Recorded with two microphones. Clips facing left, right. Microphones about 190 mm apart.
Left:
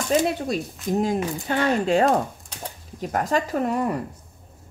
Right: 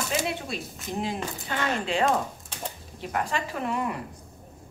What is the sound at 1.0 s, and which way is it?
Speech, 45° left (ahead or behind).